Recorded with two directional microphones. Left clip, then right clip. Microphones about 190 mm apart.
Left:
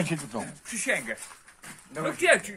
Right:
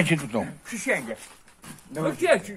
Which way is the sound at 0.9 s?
25° left (ahead or behind).